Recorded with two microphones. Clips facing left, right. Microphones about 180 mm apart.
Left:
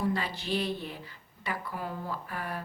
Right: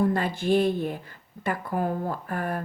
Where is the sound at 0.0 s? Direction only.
50° right (ahead or behind).